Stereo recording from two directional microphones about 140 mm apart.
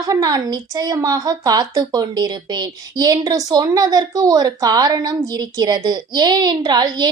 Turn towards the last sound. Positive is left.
turn(degrees=-30)  # may be behind; listen again after turning